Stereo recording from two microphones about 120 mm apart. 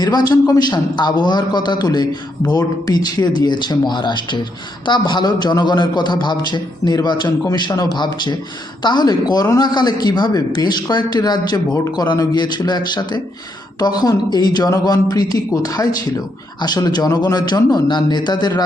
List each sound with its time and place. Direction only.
0.0 s speech: 35° left (ahead or behind)